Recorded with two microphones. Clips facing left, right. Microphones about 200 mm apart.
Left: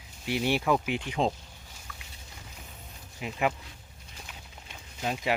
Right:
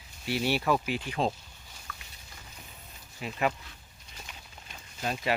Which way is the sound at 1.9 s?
15° left (ahead or behind).